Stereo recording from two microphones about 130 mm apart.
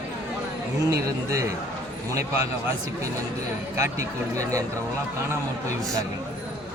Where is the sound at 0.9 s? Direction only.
25° right (ahead or behind).